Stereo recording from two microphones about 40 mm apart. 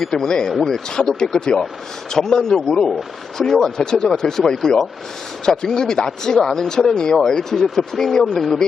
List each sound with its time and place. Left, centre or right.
0.0 s speech: centre
7.5 s speech: centre